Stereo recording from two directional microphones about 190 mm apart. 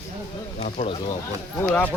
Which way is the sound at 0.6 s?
35° left (ahead or behind).